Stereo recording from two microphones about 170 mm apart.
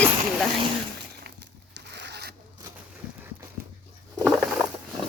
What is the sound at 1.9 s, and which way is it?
Zipper, 85° right.